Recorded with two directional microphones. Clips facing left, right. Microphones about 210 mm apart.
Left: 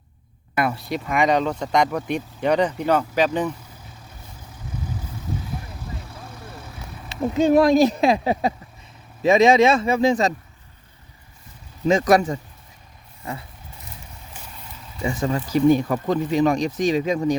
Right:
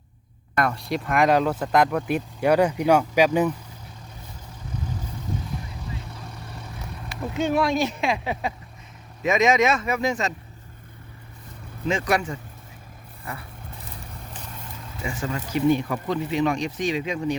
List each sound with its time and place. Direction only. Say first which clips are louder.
0.5 s speech: left 1 dB; 5° left (ahead or behind); by 3.5 s 10° right (ahead or behind)
7.1 s speech: left 7 dB; 35° left (ahead or behind)
11.9 s speech: left 7 dB; 40° left (ahead or behind)
15.0 s speech: left 6 dB; 35° left (ahead or behind)